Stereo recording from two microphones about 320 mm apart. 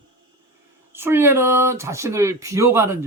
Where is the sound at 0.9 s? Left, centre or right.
Centre.